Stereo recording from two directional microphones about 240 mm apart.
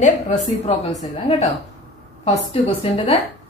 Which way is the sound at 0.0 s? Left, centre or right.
Left.